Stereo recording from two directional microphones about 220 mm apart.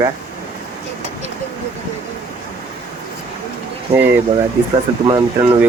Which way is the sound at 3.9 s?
10° right (ahead or behind).